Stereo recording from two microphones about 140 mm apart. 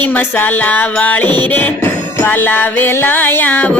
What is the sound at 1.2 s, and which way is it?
Music, 30° right (ahead or behind).